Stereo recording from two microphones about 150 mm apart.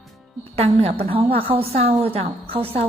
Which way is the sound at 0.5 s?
45° right (ahead or behind).